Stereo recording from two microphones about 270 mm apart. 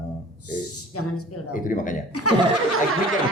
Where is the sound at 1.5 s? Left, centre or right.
Left.